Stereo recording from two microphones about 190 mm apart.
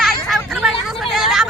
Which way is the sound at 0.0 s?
Centre (ahead or behind).